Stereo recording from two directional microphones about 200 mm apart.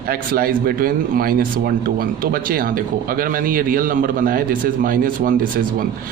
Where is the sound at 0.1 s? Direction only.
50° right (ahead or behind).